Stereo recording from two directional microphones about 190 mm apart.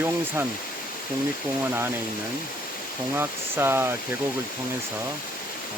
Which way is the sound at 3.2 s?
10° right (ahead or behind).